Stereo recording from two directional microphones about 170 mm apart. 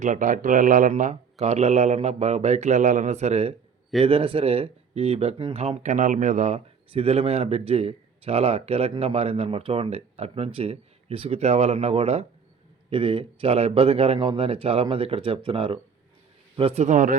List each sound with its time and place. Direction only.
0.0 s a man's voice: 50° right (ahead or behind)